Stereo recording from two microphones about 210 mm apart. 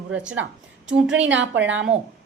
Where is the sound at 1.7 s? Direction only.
60° right (ahead or behind).